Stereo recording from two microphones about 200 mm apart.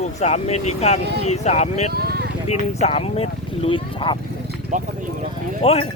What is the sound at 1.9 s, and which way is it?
Vehicle, 50° right (ahead or behind).